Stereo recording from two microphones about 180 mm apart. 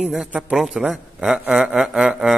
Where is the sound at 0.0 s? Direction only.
5° right (ahead or behind).